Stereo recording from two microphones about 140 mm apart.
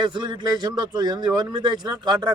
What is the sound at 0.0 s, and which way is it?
A man's voice, 35° right (ahead or behind).